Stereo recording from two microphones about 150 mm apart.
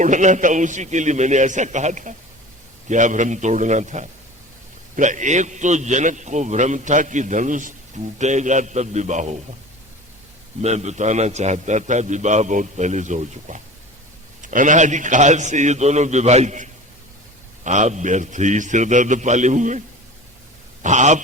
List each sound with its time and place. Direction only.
0.0 s a man's voice: 55° right (ahead or behind)
10.6 s a man's voice: 50° right (ahead or behind)
20.8 s a man's voice: 55° right (ahead or behind)